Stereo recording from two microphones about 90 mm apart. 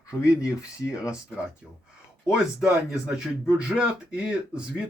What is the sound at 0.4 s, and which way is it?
Speech, 35° left (ahead or behind).